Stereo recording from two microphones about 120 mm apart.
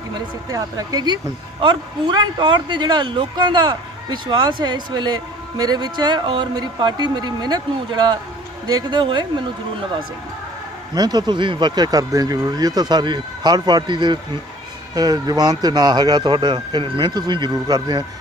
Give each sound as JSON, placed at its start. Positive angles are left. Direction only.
{"t": 0.1, "sound": "speech", "side_deg": -30}
{"t": 11.0, "sound": "speech", "side_deg": -35}